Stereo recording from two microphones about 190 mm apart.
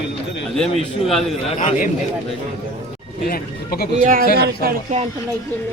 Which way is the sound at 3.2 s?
50° left (ahead or behind).